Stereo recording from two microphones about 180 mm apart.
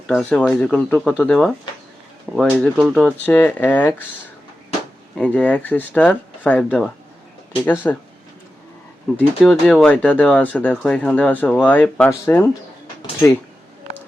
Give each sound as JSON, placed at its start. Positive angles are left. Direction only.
{"t": 0.1, "sound": "speech", "side_deg": 5}
{"t": 3.2, "sound": "speech", "side_deg": 10}
{"t": 5.1, "sound": "speech", "side_deg": 5}
{"t": 9.1, "sound": "speech", "side_deg": 10}